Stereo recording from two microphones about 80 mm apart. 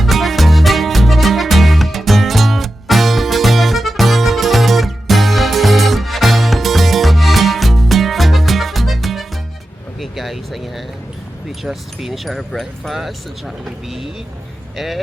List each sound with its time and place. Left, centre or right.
0.0 s music: centre
10.0 s vehicle: centre
11.6 s speech: centre